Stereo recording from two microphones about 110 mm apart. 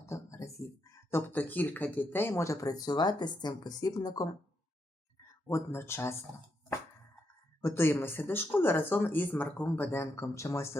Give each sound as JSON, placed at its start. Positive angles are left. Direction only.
{"t": 0.0, "sound": "a sound", "side_deg": 30}
{"t": 1.1, "sound": "speech", "side_deg": 15}
{"t": 5.5, "sound": "speech", "side_deg": 25}
{"t": 7.6, "sound": "speech", "side_deg": 20}